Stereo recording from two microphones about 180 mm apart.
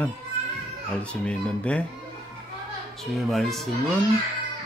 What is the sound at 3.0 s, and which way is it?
Speech, centre (ahead or behind).